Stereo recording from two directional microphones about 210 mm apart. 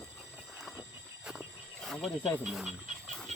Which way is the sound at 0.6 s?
Centre (ahead or behind).